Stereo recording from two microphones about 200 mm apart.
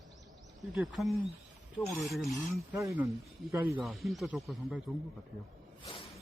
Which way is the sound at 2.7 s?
15° right (ahead or behind).